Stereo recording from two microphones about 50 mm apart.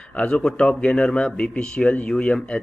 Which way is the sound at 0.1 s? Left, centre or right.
Left.